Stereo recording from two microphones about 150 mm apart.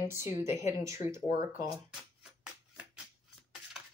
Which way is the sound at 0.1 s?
20° right (ahead or behind).